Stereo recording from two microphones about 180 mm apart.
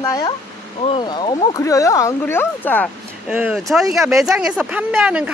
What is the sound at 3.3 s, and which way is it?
Speech, 5° right (ahead or behind).